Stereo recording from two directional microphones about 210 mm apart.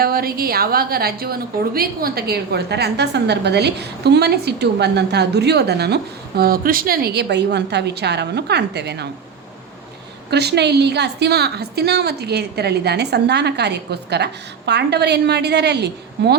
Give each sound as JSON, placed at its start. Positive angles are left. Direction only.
{"t": 0.0, "sound": "a woman's voice", "side_deg": -45}
{"t": 10.2, "sound": "a woman's voice", "side_deg": -50}